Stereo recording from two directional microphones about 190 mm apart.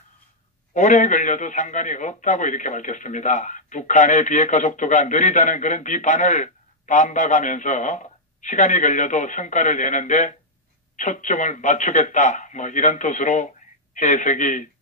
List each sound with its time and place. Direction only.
0.7 s a man's voice: 40° left (ahead or behind)